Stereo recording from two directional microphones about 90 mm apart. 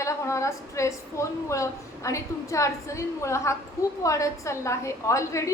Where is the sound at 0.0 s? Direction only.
35° left (ahead or behind).